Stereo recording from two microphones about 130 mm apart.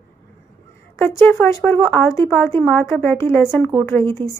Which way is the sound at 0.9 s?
15° left (ahead or behind).